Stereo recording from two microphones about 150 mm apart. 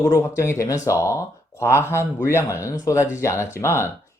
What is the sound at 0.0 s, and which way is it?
Speech, 20° left (ahead or behind).